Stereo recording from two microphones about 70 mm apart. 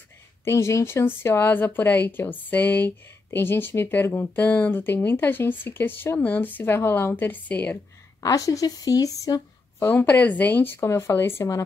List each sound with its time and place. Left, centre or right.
0.5 s speech: left
8.2 s speech: left
9.8 s speech: left